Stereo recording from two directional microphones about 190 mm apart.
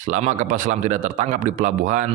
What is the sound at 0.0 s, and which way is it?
A man's voice, 40° right (ahead or behind).